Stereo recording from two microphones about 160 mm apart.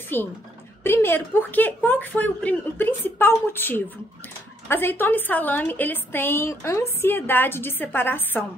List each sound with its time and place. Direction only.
0.1 s a woman's voice: 15° left (ahead or behind)